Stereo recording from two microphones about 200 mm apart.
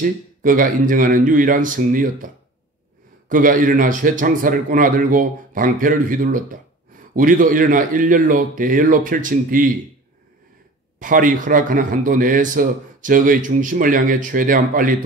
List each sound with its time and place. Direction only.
0.0 s speech: 40° right (ahead or behind)
3.3 s speech: 45° right (ahead or behind)
11.0 s speech: 40° right (ahead or behind)